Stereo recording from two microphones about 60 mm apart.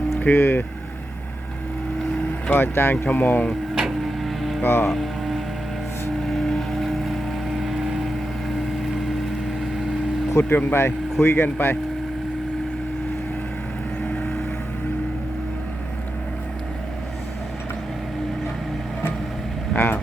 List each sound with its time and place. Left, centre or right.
0.2 s speech: left
2.5 s speech: left
3.8 s vehicle: centre
4.6 s speech: left
4.9 s music: centre
6.2 s vehicle: centre
10.5 s speech: left
14.0 s vehicle: centre
19.7 s vehicle: left